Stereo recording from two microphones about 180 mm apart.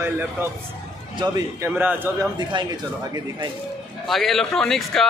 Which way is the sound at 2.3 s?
20° right (ahead or behind).